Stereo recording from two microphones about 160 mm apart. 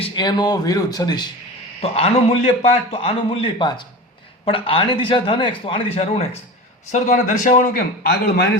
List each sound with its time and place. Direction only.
0.0 s speech: 25° left (ahead or behind)
1.8 s a man's voice: 40° left (ahead or behind)
6.9 s a man's voice: 55° left (ahead or behind); by 8.4 s 80° left